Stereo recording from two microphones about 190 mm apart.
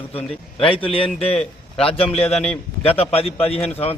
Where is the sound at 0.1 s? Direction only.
30° left (ahead or behind).